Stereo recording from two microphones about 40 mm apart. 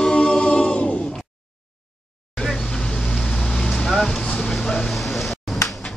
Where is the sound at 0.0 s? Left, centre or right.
Left.